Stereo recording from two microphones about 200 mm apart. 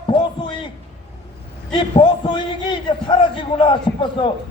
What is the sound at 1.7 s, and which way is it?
A man's voice, 25° left (ahead or behind).